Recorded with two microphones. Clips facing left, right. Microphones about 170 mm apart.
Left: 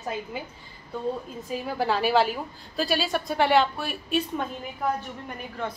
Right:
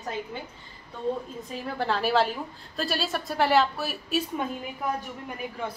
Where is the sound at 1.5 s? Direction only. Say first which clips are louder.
Left 3 dB; 5° left (ahead or behind).